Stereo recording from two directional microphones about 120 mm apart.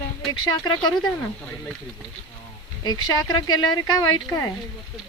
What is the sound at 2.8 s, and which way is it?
Speech, 35° left (ahead or behind).